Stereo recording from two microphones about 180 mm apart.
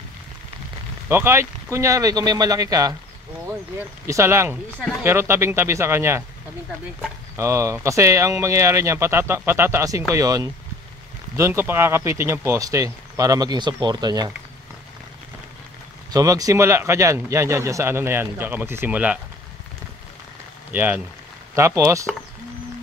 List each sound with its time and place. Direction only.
1.0 s speech: 15° right (ahead or behind)
4.1 s a man's voice: 15° right (ahead or behind)
7.3 s a man's voice: 15° right (ahead or behind)
16.1 s a man's voice: 20° right (ahead or behind)
20.7 s a man's voice: 10° right (ahead or behind)